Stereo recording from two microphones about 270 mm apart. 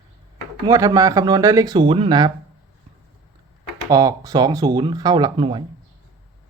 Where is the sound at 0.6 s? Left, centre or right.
Centre.